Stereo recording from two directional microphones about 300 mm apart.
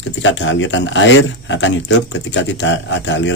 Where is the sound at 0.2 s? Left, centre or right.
Left.